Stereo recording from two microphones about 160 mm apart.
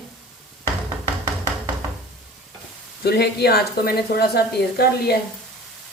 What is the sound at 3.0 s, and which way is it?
A woman's voice, 90° left.